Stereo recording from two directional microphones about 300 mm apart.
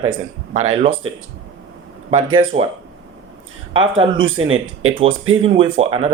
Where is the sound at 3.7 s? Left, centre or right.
Right.